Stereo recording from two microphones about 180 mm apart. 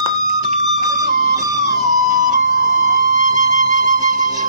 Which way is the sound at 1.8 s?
45° right (ahead or behind).